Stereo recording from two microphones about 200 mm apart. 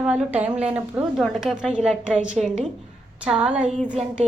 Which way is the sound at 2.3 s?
35° right (ahead or behind).